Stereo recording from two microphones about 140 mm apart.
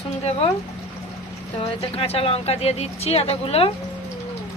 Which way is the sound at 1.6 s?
40° left (ahead or behind).